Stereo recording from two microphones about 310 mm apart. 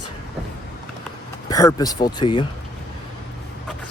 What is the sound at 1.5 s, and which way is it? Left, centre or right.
Speech, centre.